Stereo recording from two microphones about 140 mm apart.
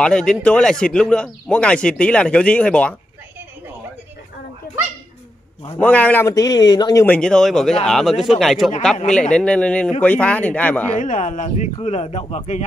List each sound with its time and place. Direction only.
0.0 s a man's voice: 5° left (ahead or behind)
5.8 s a man's voice: 10° left (ahead or behind)
6.2 s speech: 25° left (ahead or behind)
7.1 s a man's voice: 5° left (ahead or behind)
11.0 s speech: 60° left (ahead or behind)